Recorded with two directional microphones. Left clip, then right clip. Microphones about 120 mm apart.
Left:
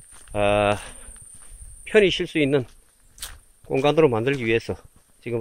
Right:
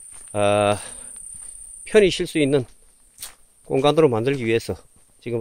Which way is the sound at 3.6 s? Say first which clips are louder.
Right 1 dB; 40° right (ahead or behind).